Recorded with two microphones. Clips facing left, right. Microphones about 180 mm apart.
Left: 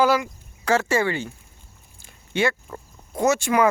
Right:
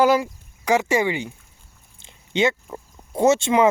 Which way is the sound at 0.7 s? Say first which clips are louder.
Right 1 dB; 15° right (ahead or behind).